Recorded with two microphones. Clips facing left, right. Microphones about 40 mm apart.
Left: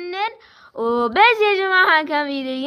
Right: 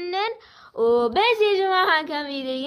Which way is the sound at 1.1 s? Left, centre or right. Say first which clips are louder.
Left 6 dB; left.